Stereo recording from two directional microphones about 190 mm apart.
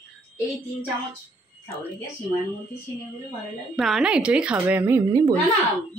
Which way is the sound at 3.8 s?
Centre (ahead or behind).